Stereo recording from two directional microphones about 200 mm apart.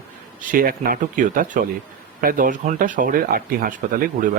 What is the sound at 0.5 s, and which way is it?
A man's voice, 45° right (ahead or behind).